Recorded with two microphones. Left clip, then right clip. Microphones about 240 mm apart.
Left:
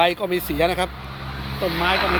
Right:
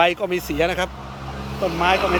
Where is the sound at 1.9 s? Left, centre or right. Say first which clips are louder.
Right 1 dB; right.